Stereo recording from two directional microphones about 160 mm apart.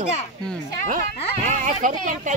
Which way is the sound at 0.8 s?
55° right (ahead or behind).